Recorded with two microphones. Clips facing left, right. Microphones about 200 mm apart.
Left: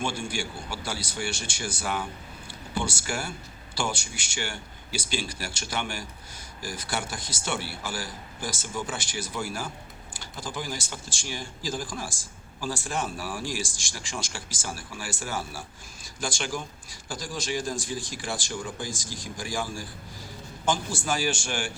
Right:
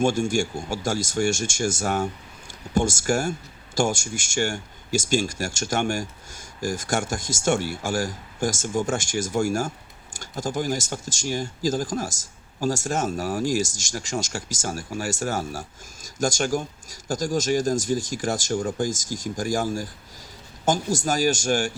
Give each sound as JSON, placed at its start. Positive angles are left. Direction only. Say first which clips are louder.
{"t": 0.0, "sound": "speech", "louder": "right 10 dB", "side_deg": -45}